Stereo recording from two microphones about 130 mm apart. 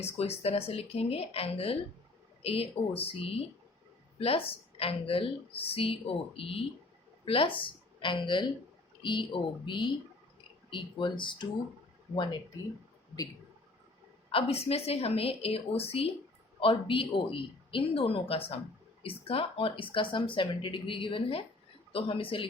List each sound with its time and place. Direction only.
0.0 s a woman's voice: 50° left (ahead or behind)
14.3 s a woman's voice: 45° left (ahead or behind)